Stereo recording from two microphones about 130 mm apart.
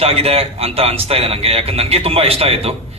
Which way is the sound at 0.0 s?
50° right (ahead or behind).